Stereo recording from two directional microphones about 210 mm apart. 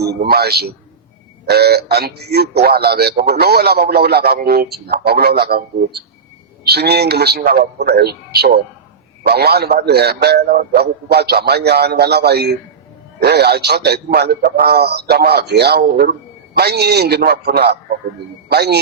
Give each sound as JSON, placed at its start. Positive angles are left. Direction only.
{"t": 0.0, "sound": "a man's voice", "side_deg": -50}